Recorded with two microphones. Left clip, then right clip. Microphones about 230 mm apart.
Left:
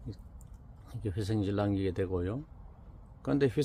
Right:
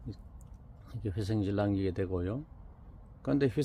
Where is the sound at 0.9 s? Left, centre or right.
Centre.